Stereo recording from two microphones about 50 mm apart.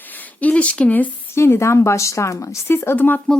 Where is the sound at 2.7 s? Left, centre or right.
Left.